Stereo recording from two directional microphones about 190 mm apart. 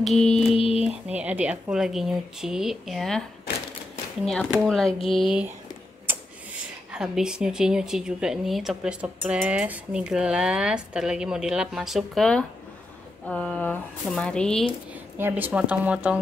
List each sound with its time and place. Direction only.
0.0 s speech: centre (ahead or behind)
0.6 s speech: 30° left (ahead or behind)
0.8 s speech: 5° right (ahead or behind)
4.3 s speech: centre (ahead or behind)
15.1 s speech: 10° right (ahead or behind)